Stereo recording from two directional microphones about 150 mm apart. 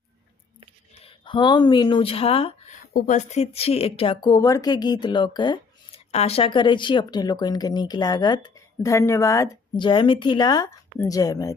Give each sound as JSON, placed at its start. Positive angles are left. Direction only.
{"t": 1.0, "sound": "speech", "side_deg": 35}
{"t": 2.9, "sound": "speech", "side_deg": 50}
{"t": 6.1, "sound": "speech", "side_deg": 45}